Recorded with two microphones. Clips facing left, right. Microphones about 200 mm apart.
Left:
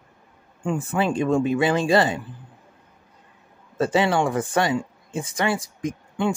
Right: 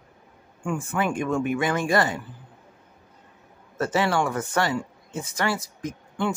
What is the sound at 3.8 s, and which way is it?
Speech, 20° left (ahead or behind).